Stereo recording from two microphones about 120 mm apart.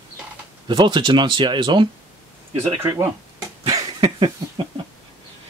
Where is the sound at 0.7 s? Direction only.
40° right (ahead or behind).